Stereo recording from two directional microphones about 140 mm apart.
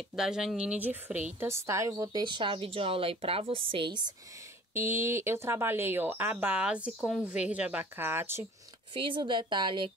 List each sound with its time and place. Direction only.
0.1 s a woman's voice: 5° right (ahead or behind); by 4.0 s 40° right (ahead or behind)
4.7 s speech: 20° right (ahead or behind)
8.9 s a woman's voice: 35° right (ahead or behind)